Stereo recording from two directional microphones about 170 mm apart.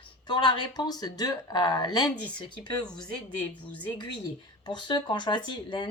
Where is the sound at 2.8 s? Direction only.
5° left (ahead or behind).